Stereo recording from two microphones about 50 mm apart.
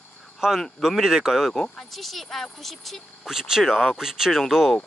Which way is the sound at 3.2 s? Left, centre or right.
Centre.